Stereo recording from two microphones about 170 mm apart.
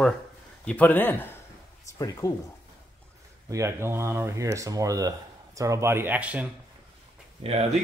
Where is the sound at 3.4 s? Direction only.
15° right (ahead or behind).